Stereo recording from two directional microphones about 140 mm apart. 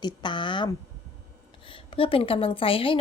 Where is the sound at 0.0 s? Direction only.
35° left (ahead or behind).